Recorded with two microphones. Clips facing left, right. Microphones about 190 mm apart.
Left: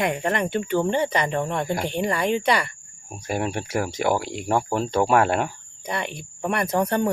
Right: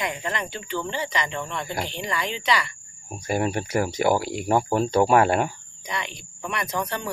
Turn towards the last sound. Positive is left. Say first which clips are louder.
# left 7 dB
turn(degrees=55)  # may be behind; listen again after turning